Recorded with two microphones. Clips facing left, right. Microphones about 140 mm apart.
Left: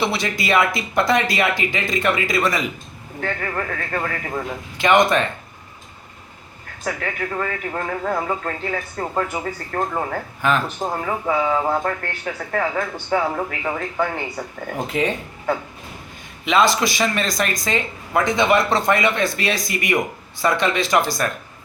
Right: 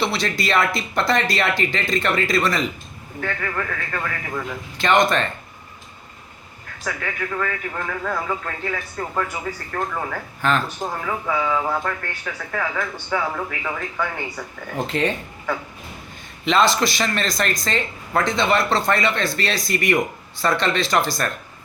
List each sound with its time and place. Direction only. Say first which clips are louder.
0.0 s speech: even; 15° left (ahead or behind)
3.2 s speech: left 1 dB; 30° left (ahead or behind)
4.8 s speech: left 2 dB; 15° left (ahead or behind)
6.8 s speech: left 2 dB; 30° left (ahead or behind)
10.4 s speech: left 1 dB; 10° left (ahead or behind)
10.8 s speech: left 3 dB; 30° left (ahead or behind)
14.8 s speech: left 1 dB; 5° left (ahead or behind)
16.5 s speech: left 1 dB; 10° left (ahead or behind)